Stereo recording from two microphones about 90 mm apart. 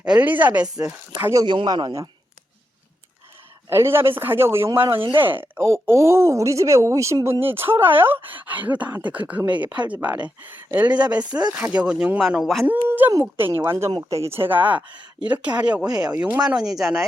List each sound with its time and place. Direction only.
0.0 s speech: 15° right (ahead or behind)
1.6 s a man's voice: 50° right (ahead or behind)
3.7 s a woman's voice: 25° right (ahead or behind); by 12.6 s centre (ahead or behind)
12.6 s speech: 20° right (ahead or behind); by 17.1 s 5° right (ahead or behind)